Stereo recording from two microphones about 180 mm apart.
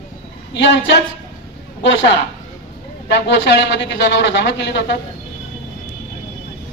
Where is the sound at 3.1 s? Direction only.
75° left (ahead or behind).